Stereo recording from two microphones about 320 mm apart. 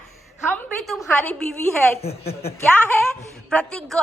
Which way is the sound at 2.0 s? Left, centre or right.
Centre.